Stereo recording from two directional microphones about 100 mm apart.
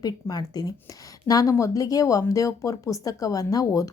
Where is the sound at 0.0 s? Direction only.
40° left (ahead or behind).